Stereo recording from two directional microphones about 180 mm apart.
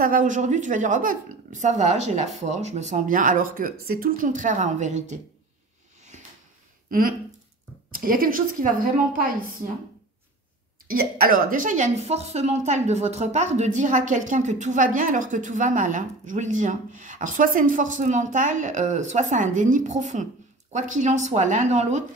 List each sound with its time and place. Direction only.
0.0 s a woman's voice: 50° right (ahead or behind)
6.1 s drawer open or close: 40° right (ahead or behind)
6.9 s a woman's voice: 50° right (ahead or behind)
10.9 s a woman's voice: 55° right (ahead or behind)